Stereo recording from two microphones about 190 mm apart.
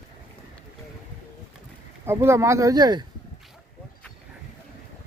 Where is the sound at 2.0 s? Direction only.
15° right (ahead or behind).